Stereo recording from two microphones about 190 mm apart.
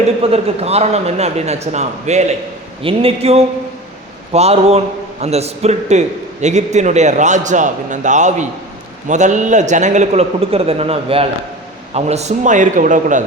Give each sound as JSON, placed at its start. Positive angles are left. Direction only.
{"t": 0.2, "sound": "a man's voice", "side_deg": -30}